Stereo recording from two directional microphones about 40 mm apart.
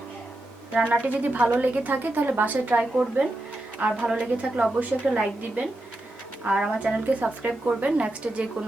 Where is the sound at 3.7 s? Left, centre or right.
Right.